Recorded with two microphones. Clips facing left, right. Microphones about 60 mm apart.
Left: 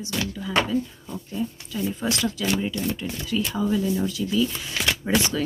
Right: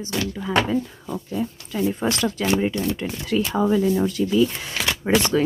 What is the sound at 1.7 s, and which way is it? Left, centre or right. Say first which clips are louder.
A woman's voice: right 5 dB; right.